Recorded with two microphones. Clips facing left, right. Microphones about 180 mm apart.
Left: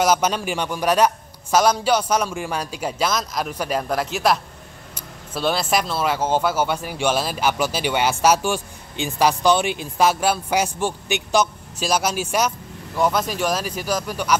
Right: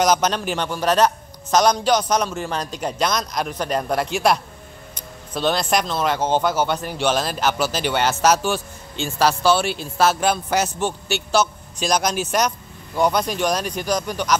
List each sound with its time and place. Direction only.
0.0 s speech: 10° left (ahead or behind)